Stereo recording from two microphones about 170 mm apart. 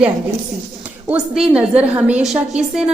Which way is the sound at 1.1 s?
5° right (ahead or behind).